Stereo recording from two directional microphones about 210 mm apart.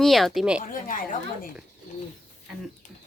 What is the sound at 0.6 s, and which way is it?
Speech, 40° left (ahead or behind).